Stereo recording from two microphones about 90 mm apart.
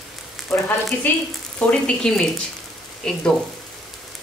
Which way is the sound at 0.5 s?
10° left (ahead or behind).